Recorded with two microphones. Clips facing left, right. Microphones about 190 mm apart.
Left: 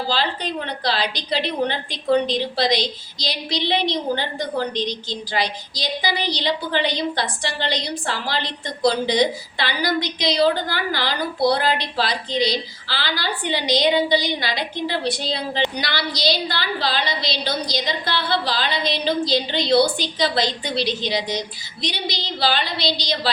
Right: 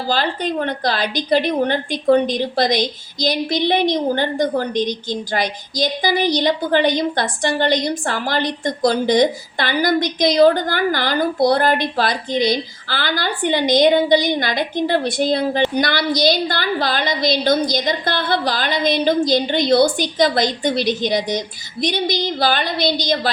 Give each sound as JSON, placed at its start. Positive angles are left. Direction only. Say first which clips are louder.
{"t": 0.1, "sound": "a woman's voice", "louder": "right 8 dB", "side_deg": -50}